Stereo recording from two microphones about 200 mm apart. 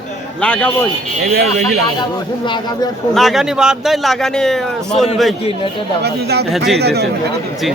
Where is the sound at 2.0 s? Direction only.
20° left (ahead or behind).